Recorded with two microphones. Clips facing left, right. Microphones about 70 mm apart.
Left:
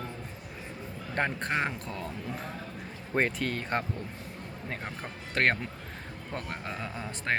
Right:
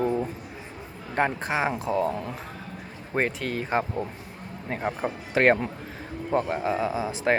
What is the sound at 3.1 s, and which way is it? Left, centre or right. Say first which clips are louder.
Speech: right 2 dB; centre.